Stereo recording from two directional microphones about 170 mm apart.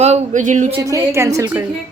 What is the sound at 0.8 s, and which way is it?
Speech, 15° right (ahead or behind).